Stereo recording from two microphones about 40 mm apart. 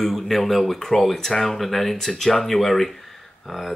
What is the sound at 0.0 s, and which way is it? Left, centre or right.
Speech, centre.